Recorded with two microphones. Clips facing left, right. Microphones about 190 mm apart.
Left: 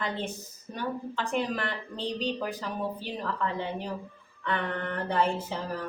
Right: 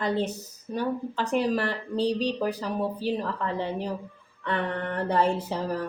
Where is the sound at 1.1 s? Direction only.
40° right (ahead or behind).